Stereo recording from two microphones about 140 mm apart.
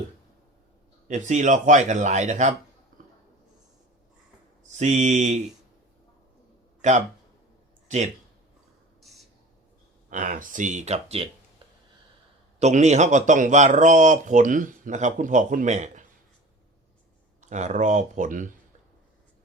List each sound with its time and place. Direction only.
1.0 s speech: 60° right (ahead or behind)
4.8 s speech: 55° right (ahead or behind)
6.8 s speech: 55° right (ahead or behind)
9.0 s a sound: centre (ahead or behind)
10.1 s speech: 65° right (ahead or behind); by 11.3 s 50° right (ahead or behind)
12.5 s speech: 55° right (ahead or behind)
17.4 s speech: 60° right (ahead or behind)